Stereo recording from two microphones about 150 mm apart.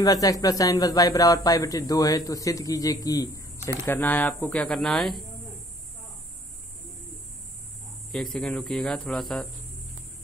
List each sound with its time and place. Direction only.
0.0 s speech: 25° left (ahead or behind); by 5.1 s centre (ahead or behind)
8.1 s speech: centre (ahead or behind)